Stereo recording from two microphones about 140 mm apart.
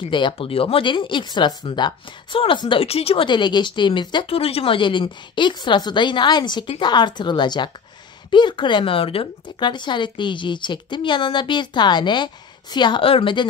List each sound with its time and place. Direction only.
0.1 s speech: 40° left (ahead or behind)